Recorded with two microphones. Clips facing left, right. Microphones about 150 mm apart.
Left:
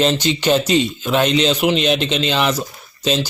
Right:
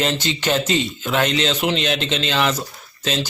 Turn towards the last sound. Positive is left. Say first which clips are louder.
# left 5 dB
turn(degrees=15)  # may be behind; listen again after turning